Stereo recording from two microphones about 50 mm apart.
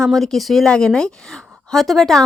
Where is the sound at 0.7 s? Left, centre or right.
Centre.